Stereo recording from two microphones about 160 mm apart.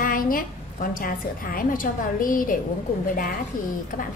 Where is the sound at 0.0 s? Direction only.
60° left (ahead or behind).